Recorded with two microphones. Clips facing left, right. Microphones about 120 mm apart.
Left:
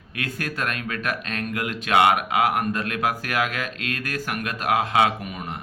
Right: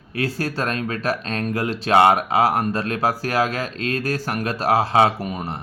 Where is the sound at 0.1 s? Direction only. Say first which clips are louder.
Right 6 dB; 35° right (ahead or behind).